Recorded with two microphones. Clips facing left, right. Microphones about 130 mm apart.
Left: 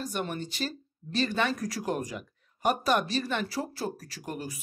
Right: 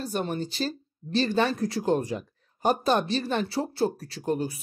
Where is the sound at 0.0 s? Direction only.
30° right (ahead or behind).